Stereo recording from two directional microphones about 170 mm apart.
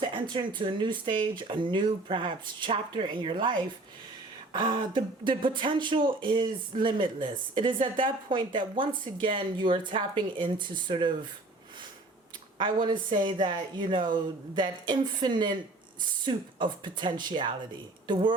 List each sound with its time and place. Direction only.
0.0 s speech: 30° right (ahead or behind)
12.5 s speech: 25° right (ahead or behind)